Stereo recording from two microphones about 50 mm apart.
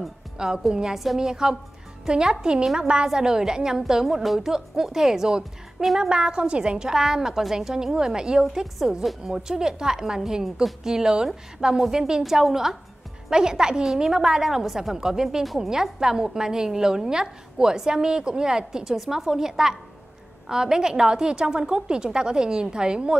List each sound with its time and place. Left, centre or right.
0.4 s a woman's voice: centre
2.6 s a woman's voice: centre